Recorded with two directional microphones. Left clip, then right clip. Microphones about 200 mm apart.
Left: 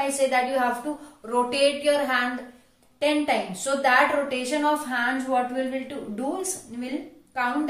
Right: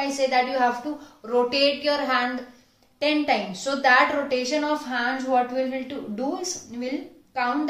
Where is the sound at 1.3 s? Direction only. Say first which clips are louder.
Right 1 dB; 20° right (ahead or behind).